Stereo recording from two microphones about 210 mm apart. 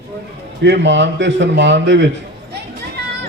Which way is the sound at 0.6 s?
55° right (ahead or behind).